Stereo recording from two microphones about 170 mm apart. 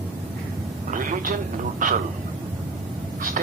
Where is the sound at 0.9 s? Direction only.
50° right (ahead or behind).